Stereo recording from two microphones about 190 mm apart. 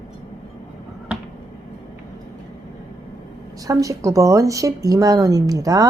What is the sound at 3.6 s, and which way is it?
A woman's voice, 15° right (ahead or behind).